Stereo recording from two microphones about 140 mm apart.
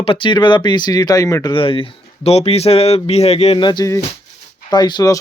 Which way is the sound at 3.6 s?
30° left (ahead or behind).